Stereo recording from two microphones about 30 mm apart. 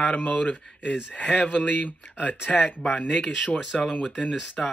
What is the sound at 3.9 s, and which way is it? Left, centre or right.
Speech, left.